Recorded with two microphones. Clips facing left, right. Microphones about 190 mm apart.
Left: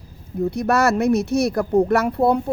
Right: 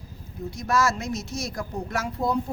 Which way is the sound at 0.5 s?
65° left (ahead or behind).